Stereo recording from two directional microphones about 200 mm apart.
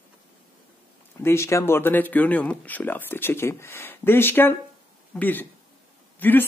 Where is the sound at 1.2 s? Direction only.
15° left (ahead or behind).